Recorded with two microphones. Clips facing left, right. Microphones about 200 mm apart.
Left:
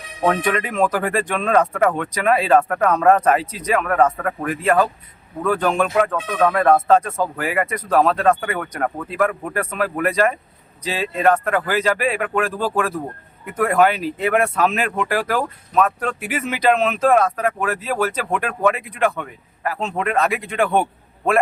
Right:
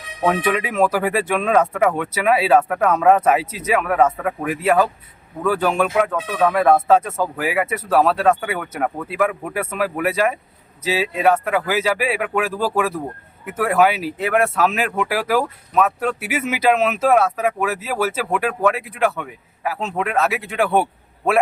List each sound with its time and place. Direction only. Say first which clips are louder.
0.3 s speech: even; 5° right (ahead or behind)